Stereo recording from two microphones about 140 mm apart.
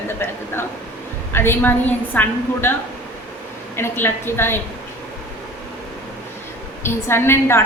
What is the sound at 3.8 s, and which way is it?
Speech, 15° left (ahead or behind).